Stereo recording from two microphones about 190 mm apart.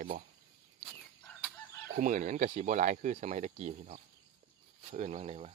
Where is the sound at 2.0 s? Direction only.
45° right (ahead or behind).